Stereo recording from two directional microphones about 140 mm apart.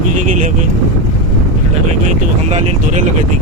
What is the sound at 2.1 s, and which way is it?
Speech, 55° right (ahead or behind).